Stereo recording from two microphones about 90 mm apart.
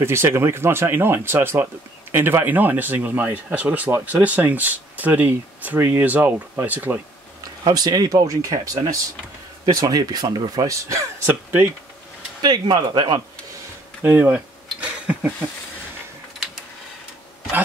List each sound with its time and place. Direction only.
0.0 s speech: 30° right (ahead or behind)
7.6 s speech: 50° right (ahead or behind)
12.4 s speech: 50° right (ahead or behind)
14.0 s a sound: 20° right (ahead or behind)